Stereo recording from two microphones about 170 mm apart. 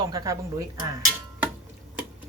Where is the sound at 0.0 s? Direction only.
20° right (ahead or behind).